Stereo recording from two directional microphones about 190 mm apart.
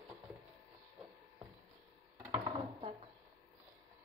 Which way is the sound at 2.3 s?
30° right (ahead or behind).